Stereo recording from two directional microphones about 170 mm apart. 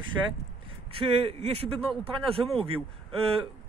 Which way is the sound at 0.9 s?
30° right (ahead or behind).